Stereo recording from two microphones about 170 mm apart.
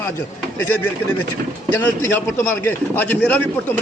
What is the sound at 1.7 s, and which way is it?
A man's voice, 10° left (ahead or behind).